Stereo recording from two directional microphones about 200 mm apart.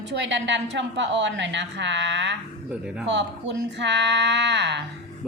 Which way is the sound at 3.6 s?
60° right (ahead or behind).